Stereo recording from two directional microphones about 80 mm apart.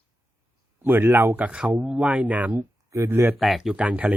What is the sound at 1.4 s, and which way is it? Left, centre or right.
A man's voice, centre.